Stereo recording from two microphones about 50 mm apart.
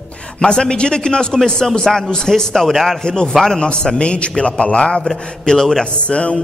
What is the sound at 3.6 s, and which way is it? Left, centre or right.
A man's voice, centre.